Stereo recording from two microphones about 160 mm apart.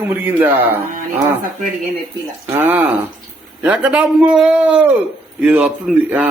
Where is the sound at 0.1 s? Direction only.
10° right (ahead or behind).